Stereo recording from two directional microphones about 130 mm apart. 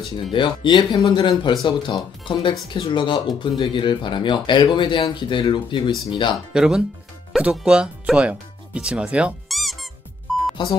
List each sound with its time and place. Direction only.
0.1 s speech: 40° left (ahead or behind)
6.3 s speech: 5° right (ahead or behind)
10.6 s speech: 35° left (ahead or behind)